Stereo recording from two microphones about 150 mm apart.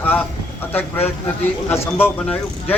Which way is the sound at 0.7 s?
15° left (ahead or behind).